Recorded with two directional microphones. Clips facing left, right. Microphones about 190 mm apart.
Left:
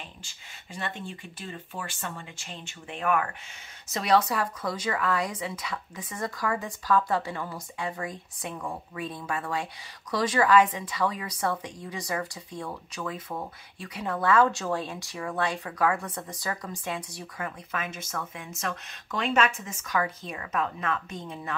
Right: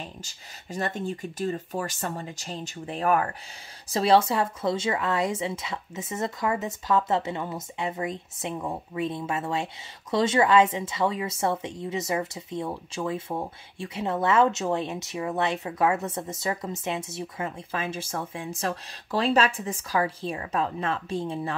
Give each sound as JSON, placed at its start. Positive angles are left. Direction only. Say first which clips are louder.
{"t": 0.0, "sound": "a woman's voice", "louder": "right 6 dB", "side_deg": -40}